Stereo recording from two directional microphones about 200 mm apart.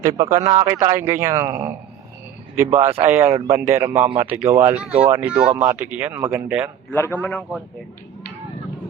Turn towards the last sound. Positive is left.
turn(degrees=5)  # may be behind; listen again after turning